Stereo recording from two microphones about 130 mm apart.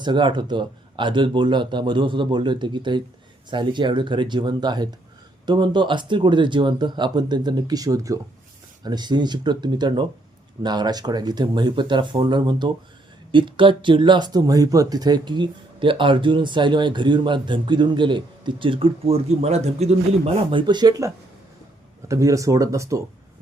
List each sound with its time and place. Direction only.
0.0 s speech: 35° right (ahead or behind)